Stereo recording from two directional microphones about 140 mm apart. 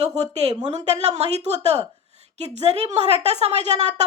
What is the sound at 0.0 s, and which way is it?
A woman's voice, 50° right (ahead or behind).